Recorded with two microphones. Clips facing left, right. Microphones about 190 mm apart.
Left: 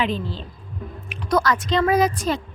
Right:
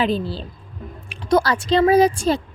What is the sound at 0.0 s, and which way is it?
A woman's voice, 35° right (ahead or behind).